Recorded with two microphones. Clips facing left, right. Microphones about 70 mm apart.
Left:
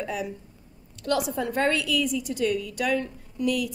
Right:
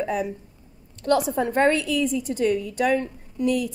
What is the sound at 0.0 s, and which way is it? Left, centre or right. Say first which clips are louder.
Speech: right 5 dB; right.